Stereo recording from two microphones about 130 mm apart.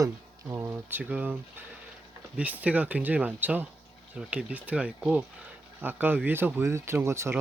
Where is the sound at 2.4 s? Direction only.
10° right (ahead or behind).